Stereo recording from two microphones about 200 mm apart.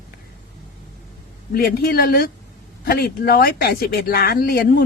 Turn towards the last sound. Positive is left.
turn(degrees=50)  # may be behind; listen again after turning